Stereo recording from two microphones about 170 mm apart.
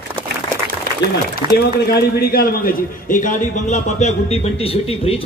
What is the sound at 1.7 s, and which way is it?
A man's voice, 65° left (ahead or behind).